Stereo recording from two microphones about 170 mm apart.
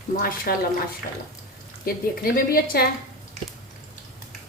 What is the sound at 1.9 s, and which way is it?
A woman's voice, 60° left (ahead or behind).